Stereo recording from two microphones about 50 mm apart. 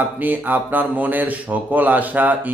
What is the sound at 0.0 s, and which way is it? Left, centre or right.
Speech, right.